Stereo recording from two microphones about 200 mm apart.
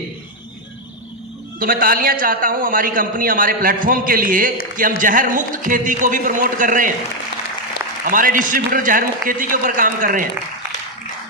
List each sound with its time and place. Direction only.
1.5 s a man's voice: 45° right (ahead or behind)
8.1 s a man's voice: 45° right (ahead or behind)